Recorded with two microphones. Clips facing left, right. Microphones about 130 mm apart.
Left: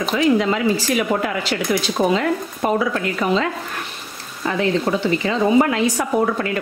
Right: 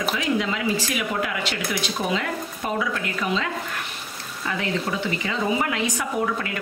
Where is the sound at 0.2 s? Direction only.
40° left (ahead or behind).